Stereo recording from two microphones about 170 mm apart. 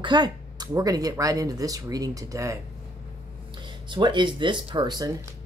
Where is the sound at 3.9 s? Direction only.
30° right (ahead or behind).